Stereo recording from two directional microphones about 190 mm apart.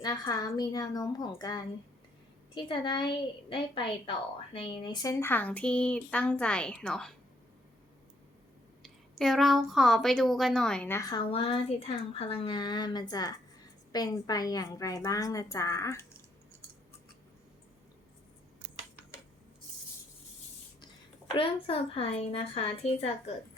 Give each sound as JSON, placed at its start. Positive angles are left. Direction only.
{"t": 0.0, "sound": "speech", "side_deg": 20}
{"t": 2.6, "sound": "speech", "side_deg": 25}
{"t": 8.8, "sound": "a woman's voice", "side_deg": 0}
{"t": 11.2, "sound": "speech", "side_deg": 30}
{"t": 21.3, "sound": "a woman's voice", "side_deg": 30}